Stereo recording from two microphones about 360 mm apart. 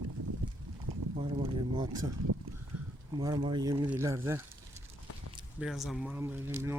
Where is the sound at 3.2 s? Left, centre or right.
Centre.